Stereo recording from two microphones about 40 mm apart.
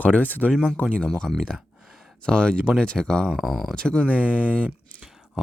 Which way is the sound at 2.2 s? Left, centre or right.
Left.